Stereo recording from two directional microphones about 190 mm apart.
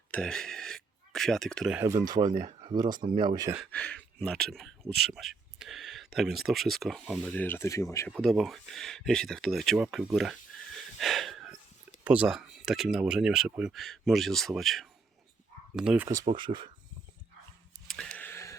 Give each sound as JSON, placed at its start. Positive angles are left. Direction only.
{"t": 0.1, "sound": "speech", "side_deg": 5}
{"t": 1.7, "sound": "speech", "side_deg": -15}
{"t": 3.7, "sound": "speech", "side_deg": 5}
{"t": 7.4, "sound": "speech", "side_deg": 15}
{"t": 8.1, "sound": "speech", "side_deg": 0}
{"t": 11.0, "sound": "snort", "side_deg": 0}
{"t": 12.0, "sound": "speech", "side_deg": -5}
{"t": 16.2, "sound": "speech", "side_deg": -25}
{"t": 17.8, "sound": "a sound", "side_deg": 5}